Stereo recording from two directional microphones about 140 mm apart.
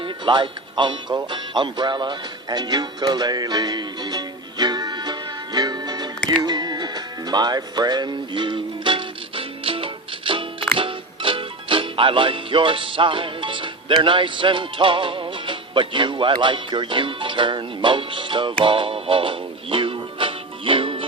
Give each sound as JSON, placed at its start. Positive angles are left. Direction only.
{"t": 0.0, "sound": "speech", "side_deg": -35}
{"t": 5.5, "sound": "music", "side_deg": -30}